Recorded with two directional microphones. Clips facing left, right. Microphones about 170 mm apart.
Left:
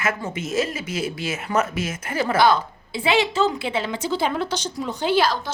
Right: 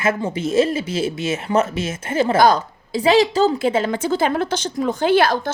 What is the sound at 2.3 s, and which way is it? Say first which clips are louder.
A woman's voice: right 2 dB; 40° right (ahead or behind).